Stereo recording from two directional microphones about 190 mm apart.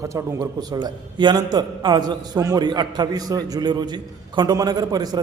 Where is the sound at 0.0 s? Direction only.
15° right (ahead or behind).